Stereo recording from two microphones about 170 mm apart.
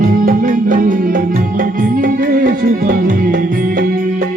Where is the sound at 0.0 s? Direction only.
50° right (ahead or behind).